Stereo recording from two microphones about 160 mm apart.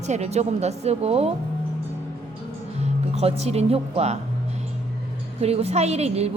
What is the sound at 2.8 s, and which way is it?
Speech, 40° right (ahead or behind).